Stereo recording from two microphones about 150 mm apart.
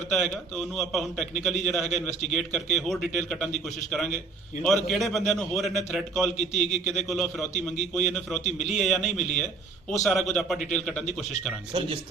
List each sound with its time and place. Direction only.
0.1 s a man's voice: centre (ahead or behind)
1.9 s a man's voice: 50° left (ahead or behind)
2.3 s a man's voice: 5° left (ahead or behind)
6.3 s a man's voice: 50° left (ahead or behind)
6.8 s a man's voice: 5° left (ahead or behind)
8.4 s a man's voice: 50° left (ahead or behind)
8.7 s a man's voice: centre (ahead or behind)
9.1 s a man's voice: 55° left (ahead or behind)
10.0 s a man's voice: centre (ahead or behind)